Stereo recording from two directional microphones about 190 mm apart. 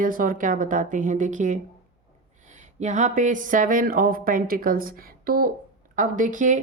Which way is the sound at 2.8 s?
40° right (ahead or behind).